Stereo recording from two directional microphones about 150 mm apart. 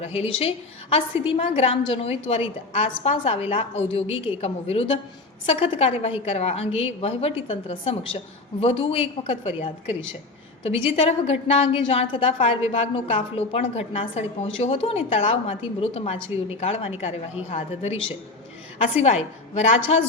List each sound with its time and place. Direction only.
0.0 s a woman's voice: 45° left (ahead or behind)
19.0 s a woman's voice: 45° left (ahead or behind)